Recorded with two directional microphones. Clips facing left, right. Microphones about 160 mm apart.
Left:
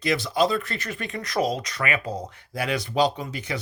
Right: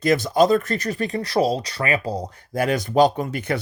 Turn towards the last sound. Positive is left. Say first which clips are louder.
# right 6 dB
turn(degrees=-50)  # may be behind; listen again after turning